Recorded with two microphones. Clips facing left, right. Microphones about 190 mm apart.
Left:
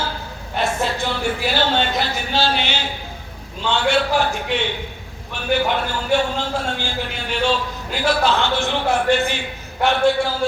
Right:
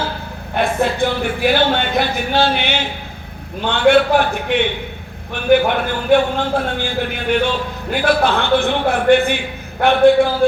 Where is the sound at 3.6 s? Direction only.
55° right (ahead or behind).